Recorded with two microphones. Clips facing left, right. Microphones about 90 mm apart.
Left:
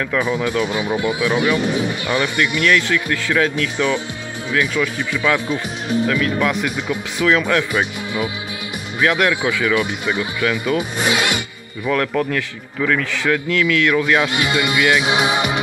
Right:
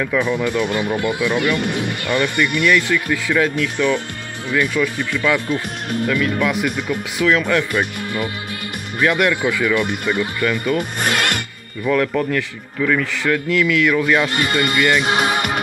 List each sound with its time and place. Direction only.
0.0 s speech: 5° left (ahead or behind)
1.6 s speech: 60° right (ahead or behind)
2.6 s a man's voice: 5° right (ahead or behind)
9.0 s a man's voice: centre (ahead or behind)
11.0 s speech: 50° right (ahead or behind)
11.8 s a man's voice: centre (ahead or behind)
15.0 s music: 50° right (ahead or behind)